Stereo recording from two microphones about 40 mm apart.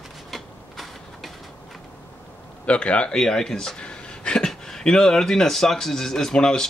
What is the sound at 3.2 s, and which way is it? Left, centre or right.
Speech, centre.